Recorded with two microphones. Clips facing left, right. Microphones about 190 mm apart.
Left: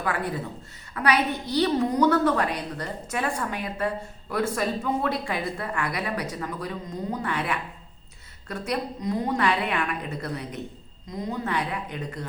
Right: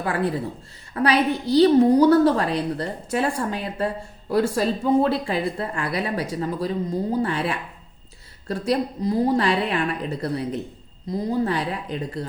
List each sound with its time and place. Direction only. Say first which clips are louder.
0.0 s a woman's voice: right 5 dB; 30° right (ahead or behind)